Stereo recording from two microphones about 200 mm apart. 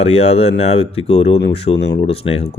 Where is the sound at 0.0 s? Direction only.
30° left (ahead or behind).